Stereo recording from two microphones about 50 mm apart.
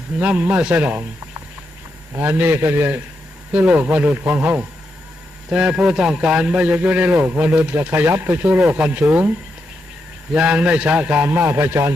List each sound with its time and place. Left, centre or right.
0.2 s a man's voice: right
3.5 s speech: right
5.5 s a man's voice: right
7.8 s speech: right
8.4 s speech: right
10.3 s a man's voice: right
11.3 s speech: right